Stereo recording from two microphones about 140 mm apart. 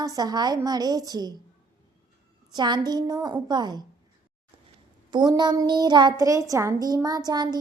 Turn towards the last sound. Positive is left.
turn(degrees=-30)  # may be behind; listen again after turning